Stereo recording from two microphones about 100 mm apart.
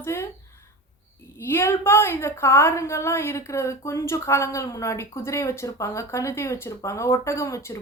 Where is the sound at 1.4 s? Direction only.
25° left (ahead or behind).